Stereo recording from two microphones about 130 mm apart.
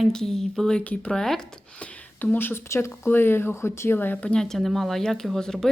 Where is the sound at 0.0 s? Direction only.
5° left (ahead or behind).